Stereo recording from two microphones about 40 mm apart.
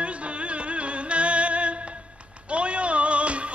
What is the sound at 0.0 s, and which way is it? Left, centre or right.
Music, right.